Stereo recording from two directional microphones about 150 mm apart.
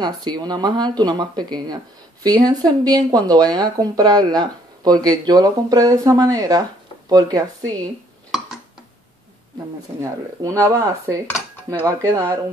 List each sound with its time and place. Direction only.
0.0 s speech: 30° right (ahead or behind)
9.9 s speech: 20° right (ahead or behind)